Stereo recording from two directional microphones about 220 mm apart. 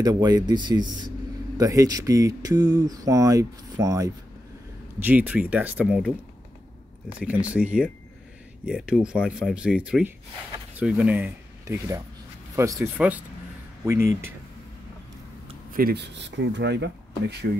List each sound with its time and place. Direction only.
0.0 s speech: 15° right (ahead or behind)
7.2 s speech: 5° right (ahead or behind)
15.7 s speech: 45° right (ahead or behind)